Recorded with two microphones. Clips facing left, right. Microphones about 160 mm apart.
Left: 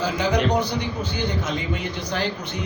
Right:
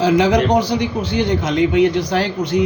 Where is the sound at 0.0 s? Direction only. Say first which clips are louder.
Right 8 dB; 90° right.